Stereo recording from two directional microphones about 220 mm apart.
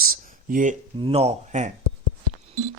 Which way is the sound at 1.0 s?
25° right (ahead or behind).